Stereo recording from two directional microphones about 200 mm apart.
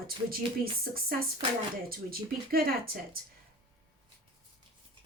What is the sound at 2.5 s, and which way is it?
Speech, 45° right (ahead or behind).